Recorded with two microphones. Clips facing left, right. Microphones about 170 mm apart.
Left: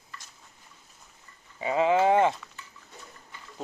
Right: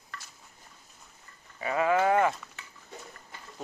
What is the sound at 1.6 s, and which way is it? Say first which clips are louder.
Speech: left 3 dB; 20° left (ahead or behind).